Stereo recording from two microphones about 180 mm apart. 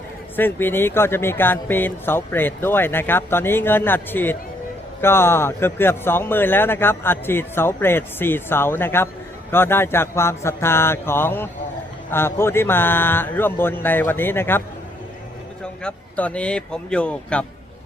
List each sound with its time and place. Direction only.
0.3 s a man's voice: 10° left (ahead or behind)
15.6 s a man's voice: 5° left (ahead or behind)